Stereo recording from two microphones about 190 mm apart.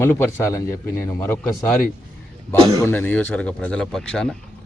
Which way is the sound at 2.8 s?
10° left (ahead or behind).